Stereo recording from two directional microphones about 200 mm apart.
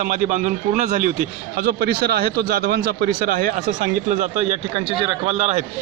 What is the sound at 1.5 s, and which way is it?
Speech, 50° right (ahead or behind).